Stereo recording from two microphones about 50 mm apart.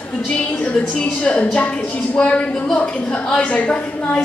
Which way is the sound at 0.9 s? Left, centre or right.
Left.